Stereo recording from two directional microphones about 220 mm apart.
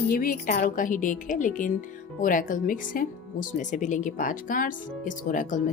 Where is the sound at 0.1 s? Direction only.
40° left (ahead or behind).